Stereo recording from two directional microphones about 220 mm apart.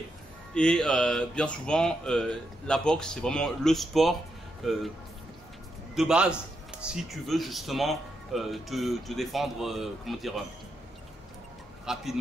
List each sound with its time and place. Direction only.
0.6 s speech: 5° left (ahead or behind)
5.9 s speech: 5° right (ahead or behind)
11.8 s a man's voice: centre (ahead or behind)